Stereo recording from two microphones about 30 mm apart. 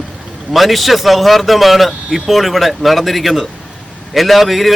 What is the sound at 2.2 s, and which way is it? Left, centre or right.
Speech, centre.